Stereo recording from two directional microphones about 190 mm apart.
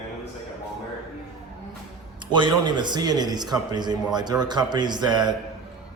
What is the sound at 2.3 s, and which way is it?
A man's voice, 25° right (ahead or behind).